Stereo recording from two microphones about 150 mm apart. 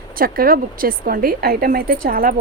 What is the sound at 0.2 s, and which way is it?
Speech, 75° right (ahead or behind).